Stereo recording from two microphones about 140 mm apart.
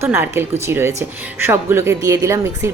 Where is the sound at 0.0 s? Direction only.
15° right (ahead or behind).